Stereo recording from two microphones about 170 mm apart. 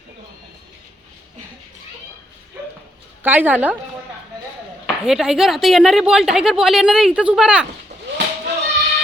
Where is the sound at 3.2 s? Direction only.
10° right (ahead or behind).